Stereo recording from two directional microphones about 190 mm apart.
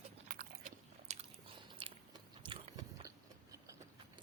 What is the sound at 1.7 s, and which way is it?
Biting, 25° right (ahead or behind).